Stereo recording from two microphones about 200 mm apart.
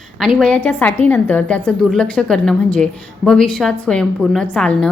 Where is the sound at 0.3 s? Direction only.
5° left (ahead or behind).